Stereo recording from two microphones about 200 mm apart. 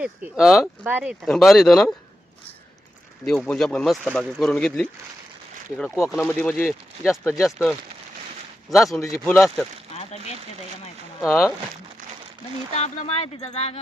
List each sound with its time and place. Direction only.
0.0 s speech: 5° right (ahead or behind)
3.2 s speech: centre (ahead or behind)
9.9 s a sound: 30° left (ahead or behind)
11.2 s speech: 5° right (ahead or behind)
12.7 s speech: 30° left (ahead or behind)